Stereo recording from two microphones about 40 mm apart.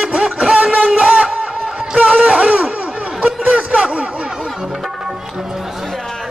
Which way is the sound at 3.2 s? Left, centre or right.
Right.